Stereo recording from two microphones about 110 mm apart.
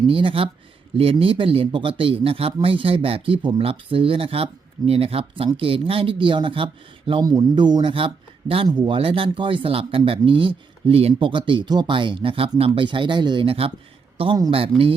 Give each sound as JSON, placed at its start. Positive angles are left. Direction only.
{"t": 0.1, "sound": "speech", "side_deg": -55}
{"t": 8.6, "sound": "speech", "side_deg": -45}